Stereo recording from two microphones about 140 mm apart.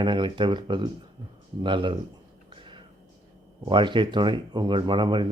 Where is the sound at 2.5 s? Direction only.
35° right (ahead or behind).